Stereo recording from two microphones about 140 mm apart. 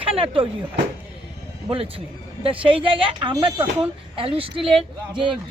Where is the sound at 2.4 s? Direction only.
40° right (ahead or behind).